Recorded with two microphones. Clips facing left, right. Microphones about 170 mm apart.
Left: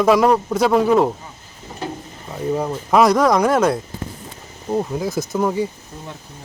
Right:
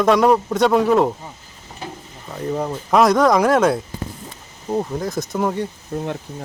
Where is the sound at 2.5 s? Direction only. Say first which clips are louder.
Left 1 dB; centre (ahead or behind).